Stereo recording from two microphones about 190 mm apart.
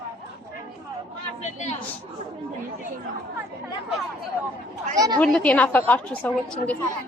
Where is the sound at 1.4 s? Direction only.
40° left (ahead or behind).